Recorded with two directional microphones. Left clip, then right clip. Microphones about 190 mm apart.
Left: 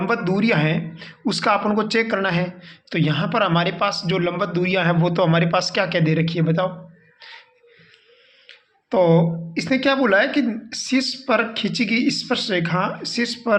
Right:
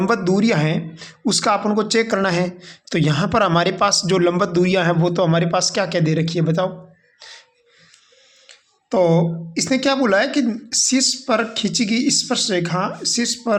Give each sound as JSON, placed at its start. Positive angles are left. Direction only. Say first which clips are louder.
{"t": 0.0, "sound": "speech", "louder": "right 3 dB", "side_deg": -35}
{"t": 7.2, "sound": "a sound", "louder": "even", "side_deg": -35}
{"t": 8.4, "sound": "speech", "louder": "right 1 dB", "side_deg": -30}